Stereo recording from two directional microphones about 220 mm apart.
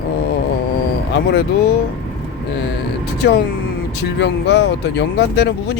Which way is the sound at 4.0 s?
50° left (ahead or behind).